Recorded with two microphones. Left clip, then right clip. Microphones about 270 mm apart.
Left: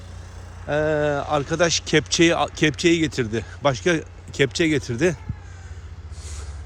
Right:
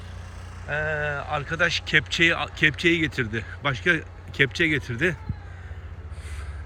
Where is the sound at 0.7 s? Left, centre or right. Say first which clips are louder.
Left 6 dB; left.